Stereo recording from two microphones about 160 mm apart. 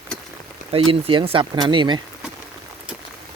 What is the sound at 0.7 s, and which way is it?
Speech, 35° right (ahead or behind).